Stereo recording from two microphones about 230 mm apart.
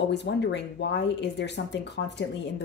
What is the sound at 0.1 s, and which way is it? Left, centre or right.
Speech, left.